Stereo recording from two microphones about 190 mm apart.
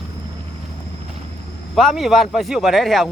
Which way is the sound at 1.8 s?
Centre (ahead or behind).